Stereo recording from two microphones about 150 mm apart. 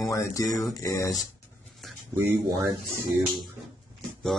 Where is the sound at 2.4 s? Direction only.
25° right (ahead or behind).